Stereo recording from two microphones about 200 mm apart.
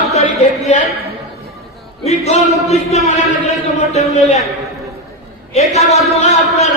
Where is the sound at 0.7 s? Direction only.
35° left (ahead or behind).